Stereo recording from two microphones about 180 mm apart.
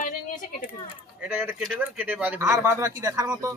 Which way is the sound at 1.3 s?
10° right (ahead or behind).